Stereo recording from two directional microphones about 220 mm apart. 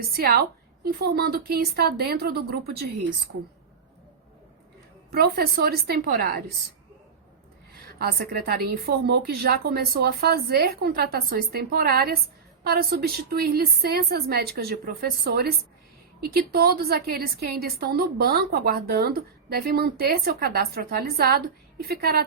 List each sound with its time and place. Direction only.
0.2 s a woman's voice: 45° right (ahead or behind)
5.1 s a woman's voice: 45° right (ahead or behind)
7.8 s a woman's voice: 45° right (ahead or behind)